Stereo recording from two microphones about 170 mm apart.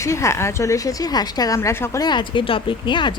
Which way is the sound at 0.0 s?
15° left (ahead or behind).